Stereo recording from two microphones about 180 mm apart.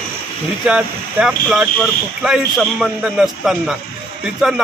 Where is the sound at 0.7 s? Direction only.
5° right (ahead or behind).